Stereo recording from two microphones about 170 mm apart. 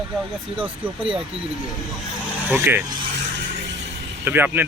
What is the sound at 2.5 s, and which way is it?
Speech, 10° right (ahead or behind).